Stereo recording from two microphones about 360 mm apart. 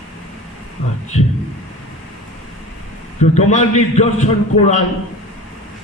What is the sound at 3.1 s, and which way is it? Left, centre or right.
Mantra, centre.